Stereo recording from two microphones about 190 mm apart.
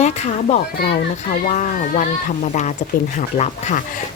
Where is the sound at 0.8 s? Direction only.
50° left (ahead or behind).